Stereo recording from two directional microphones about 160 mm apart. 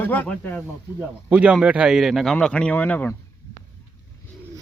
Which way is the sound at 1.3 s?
5° right (ahead or behind).